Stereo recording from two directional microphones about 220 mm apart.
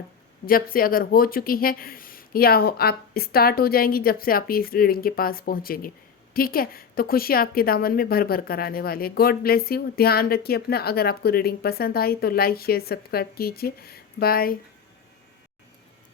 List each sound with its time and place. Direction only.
0.4 s a woman's voice: 40° left (ahead or behind)